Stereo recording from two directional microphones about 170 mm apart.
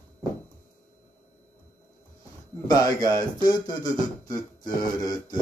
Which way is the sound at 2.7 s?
20° left (ahead or behind).